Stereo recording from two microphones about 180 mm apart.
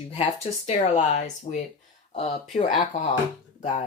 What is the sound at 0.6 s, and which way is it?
Speech, 40° left (ahead or behind).